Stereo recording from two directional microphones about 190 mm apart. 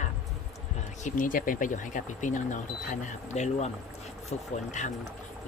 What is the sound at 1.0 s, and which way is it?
Speech, 45° left (ahead or behind).